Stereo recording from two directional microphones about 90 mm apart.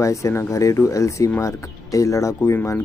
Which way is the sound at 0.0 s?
35° left (ahead or behind).